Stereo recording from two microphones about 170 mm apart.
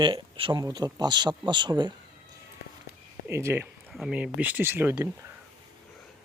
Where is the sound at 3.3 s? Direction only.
15° right (ahead or behind).